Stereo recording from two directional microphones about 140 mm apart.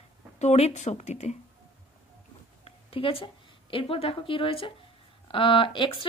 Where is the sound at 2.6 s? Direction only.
40° left (ahead or behind).